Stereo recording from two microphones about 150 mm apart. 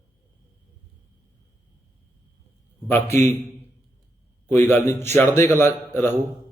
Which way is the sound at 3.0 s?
45° right (ahead or behind).